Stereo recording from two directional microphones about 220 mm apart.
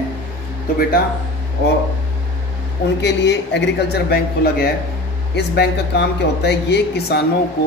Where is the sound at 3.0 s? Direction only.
50° left (ahead or behind).